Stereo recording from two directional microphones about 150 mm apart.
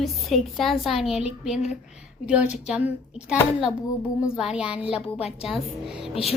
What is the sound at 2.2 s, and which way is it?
A woman's voice, 10° right (ahead or behind).